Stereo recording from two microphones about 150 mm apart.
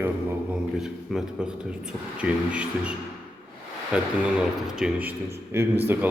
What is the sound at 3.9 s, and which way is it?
Speech, 5° right (ahead or behind).